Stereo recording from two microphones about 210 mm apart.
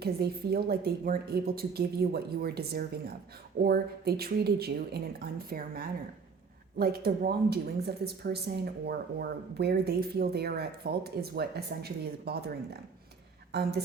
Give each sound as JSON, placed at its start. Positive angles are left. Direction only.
{"t": 0.0, "sound": "speech", "side_deg": -50}
{"t": 13.5, "sound": "speech", "side_deg": -50}